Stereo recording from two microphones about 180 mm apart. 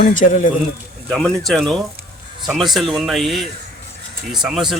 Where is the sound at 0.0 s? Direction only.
50° left (ahead or behind).